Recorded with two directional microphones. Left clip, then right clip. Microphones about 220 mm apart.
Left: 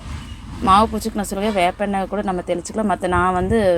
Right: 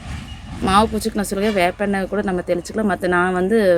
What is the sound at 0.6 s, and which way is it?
A woman's voice, 20° right (ahead or behind).